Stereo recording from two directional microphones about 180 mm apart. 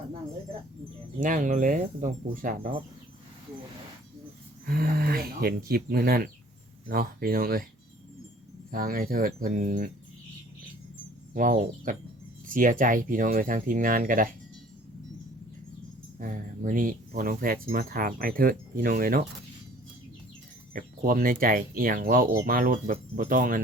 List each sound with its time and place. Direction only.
1.2 s speech: 50° right (ahead or behind)
4.6 s speech: 55° right (ahead or behind)
8.7 s speech: 50° right (ahead or behind)
11.3 s speech: 50° right (ahead or behind)
16.1 s speech: 50° right (ahead or behind)
20.7 s speech: 50° right (ahead or behind)